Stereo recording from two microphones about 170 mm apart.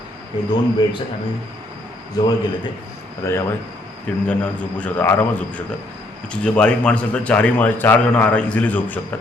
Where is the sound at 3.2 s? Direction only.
15° left (ahead or behind).